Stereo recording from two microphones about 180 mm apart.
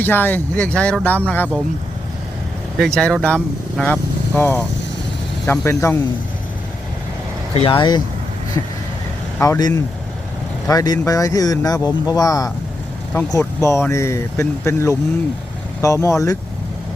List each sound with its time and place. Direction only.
0.0 s speech: 10° left (ahead or behind)
2.7 s speech: 5° left (ahead or behind)
7.5 s speech: 30° left (ahead or behind)
9.4 s speech: 20° left (ahead or behind)